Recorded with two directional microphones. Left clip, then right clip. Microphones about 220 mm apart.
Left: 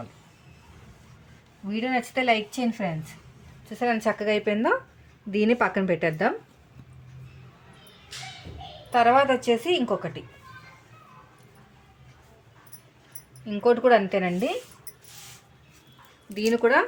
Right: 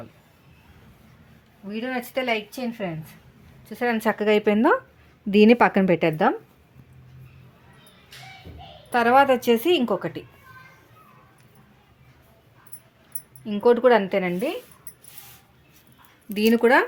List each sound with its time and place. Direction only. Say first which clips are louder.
1.9 s speech: left 2 dB; 35° right (ahead or behind)
8.9 s a woman's voice: right 2 dB; 45° right (ahead or behind)
13.4 s speech: right 3 dB; 35° right (ahead or behind)
16.3 s a woman's voice: right 3 dB; 50° right (ahead or behind)